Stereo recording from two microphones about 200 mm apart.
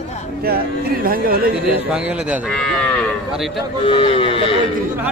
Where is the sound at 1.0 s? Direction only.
45° right (ahead or behind).